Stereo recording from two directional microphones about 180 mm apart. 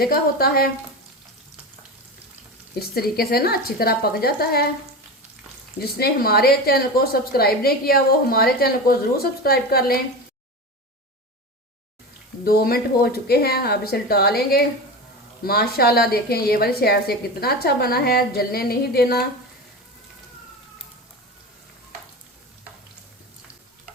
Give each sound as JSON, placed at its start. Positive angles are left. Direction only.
{"t": 0.0, "sound": "a woman's voice", "side_deg": 55}
{"t": 2.7, "sound": "a woman's voice", "side_deg": 60}
{"t": 5.8, "sound": "a woman's voice", "side_deg": 60}
{"t": 12.5, "sound": "a woman's voice", "side_deg": 60}